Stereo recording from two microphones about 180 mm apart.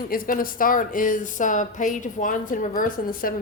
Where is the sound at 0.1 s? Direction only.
50° left (ahead or behind).